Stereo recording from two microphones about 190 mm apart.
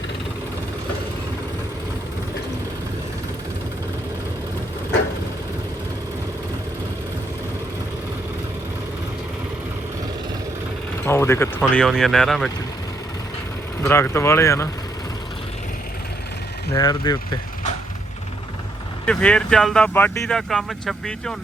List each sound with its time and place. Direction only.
11.0 s vehicle: 15° left (ahead or behind)
11.7 s speech: 5° left (ahead or behind)
13.8 s speech: 15° left (ahead or behind)
16.7 s speech: 20° left (ahead or behind)
19.0 s speech: 5° left (ahead or behind)